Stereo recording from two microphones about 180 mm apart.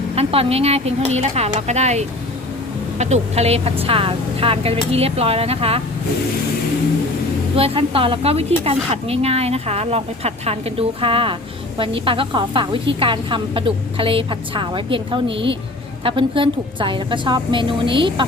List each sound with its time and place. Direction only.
0.2 s speech: 30° right (ahead or behind)
7.5 s a woman's voice: 30° right (ahead or behind)